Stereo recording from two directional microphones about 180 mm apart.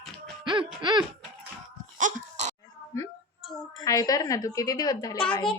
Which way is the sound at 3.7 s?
20° left (ahead or behind).